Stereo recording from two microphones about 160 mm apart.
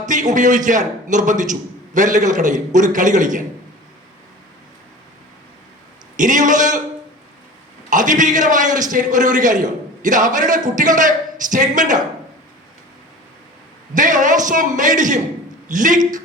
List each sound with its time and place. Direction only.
0.0 s a man's voice: 50° right (ahead or behind)
6.1 s a man's voice: 55° right (ahead or behind)
7.9 s a man's voice: 55° right (ahead or behind)
13.9 s a man's voice: 55° right (ahead or behind)